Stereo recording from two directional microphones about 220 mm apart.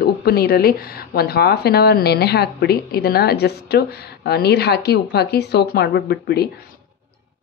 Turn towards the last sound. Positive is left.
turn(degrees=45)  # may be behind; listen again after turning